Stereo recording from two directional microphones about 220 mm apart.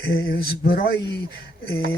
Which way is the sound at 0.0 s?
45° left (ahead or behind).